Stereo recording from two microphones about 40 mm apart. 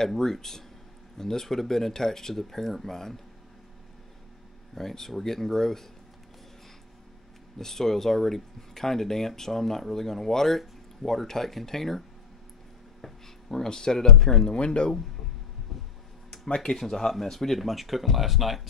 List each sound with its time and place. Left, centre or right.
0.2 s speech: centre
4.7 s speech: centre
7.5 s speech: centre
13.0 s a sound: centre
14.0 s speech: centre
14.5 s speech: left
15.7 s a sound: centre
16.3 s a sound: left
16.7 s speech: centre